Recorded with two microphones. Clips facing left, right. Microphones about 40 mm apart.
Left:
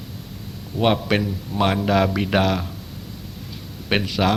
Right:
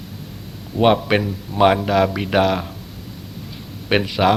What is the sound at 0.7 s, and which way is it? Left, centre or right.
A man's voice, centre.